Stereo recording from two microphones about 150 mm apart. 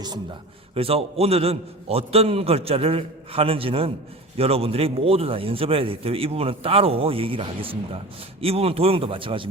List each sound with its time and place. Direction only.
0.7 s a man's voice: 40° right (ahead or behind)